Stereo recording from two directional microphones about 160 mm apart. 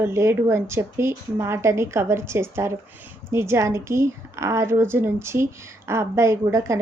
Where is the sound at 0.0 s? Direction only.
15° right (ahead or behind).